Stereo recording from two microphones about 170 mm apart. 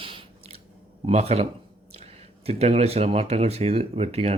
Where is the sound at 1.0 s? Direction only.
40° right (ahead or behind).